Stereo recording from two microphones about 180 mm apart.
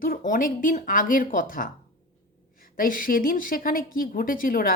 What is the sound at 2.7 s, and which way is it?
Speech, 50° left (ahead or behind).